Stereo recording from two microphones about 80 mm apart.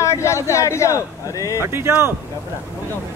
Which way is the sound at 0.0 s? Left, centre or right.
Left.